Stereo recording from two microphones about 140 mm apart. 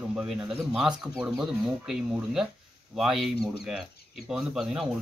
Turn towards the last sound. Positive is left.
turn(degrees=-5)  # may be behind; listen again after turning